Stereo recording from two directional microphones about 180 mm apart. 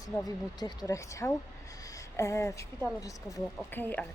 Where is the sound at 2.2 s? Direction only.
15° left (ahead or behind).